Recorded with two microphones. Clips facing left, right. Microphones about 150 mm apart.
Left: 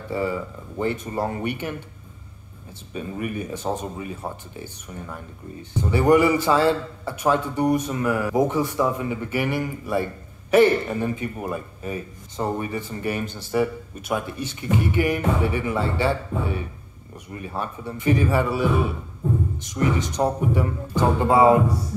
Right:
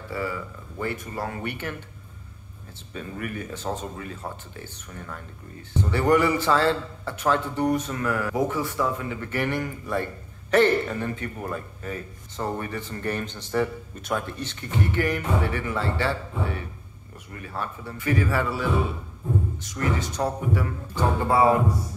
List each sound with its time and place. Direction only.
0.1 s speech: 25° left (ahead or behind)
2.9 s speech: 15° left (ahead or behind)